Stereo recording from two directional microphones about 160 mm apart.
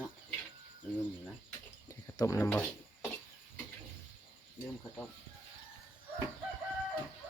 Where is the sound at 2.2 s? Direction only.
20° left (ahead or behind).